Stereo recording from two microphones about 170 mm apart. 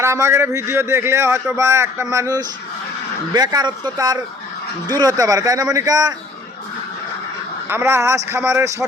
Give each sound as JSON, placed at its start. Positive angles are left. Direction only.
{"t": 0.0, "sound": "a man's voice", "side_deg": -15}
{"t": 7.7, "sound": "a man's voice", "side_deg": -15}